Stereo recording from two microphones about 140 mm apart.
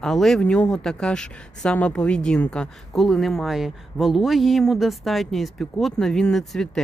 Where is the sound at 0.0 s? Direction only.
5° left (ahead or behind).